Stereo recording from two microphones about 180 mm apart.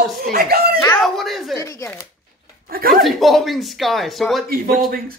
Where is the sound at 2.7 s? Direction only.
55° right (ahead or behind).